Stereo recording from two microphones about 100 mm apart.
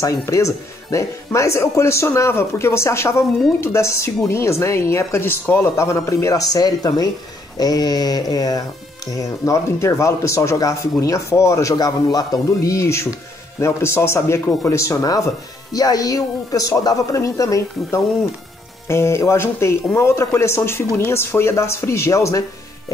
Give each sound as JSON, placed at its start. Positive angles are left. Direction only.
{"t": 0.2, "sound": "speech", "side_deg": 30}